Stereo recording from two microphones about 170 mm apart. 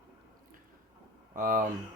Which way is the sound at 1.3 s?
50° right (ahead or behind).